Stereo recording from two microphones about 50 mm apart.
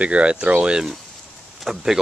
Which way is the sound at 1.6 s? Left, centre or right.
Centre.